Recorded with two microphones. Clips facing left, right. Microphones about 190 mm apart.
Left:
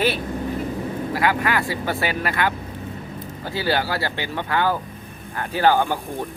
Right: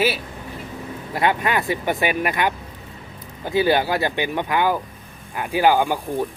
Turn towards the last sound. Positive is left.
turn(degrees=-15)  # may be behind; listen again after turning